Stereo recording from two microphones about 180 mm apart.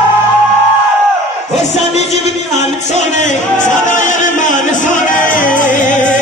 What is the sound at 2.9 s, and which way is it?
Music, 40° left (ahead or behind).